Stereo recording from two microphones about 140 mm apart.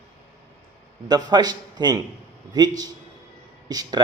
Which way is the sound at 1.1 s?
30° right (ahead or behind).